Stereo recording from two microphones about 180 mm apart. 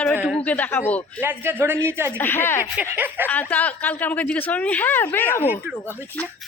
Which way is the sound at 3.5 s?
10° left (ahead or behind).